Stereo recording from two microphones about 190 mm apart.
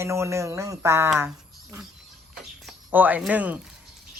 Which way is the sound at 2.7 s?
10° right (ahead or behind).